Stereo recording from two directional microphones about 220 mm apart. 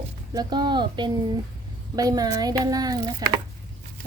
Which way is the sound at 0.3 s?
20° right (ahead or behind).